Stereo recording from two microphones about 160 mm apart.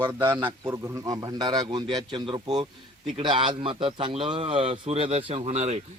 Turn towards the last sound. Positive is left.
turn(degrees=-45)  # may be behind; listen again after turning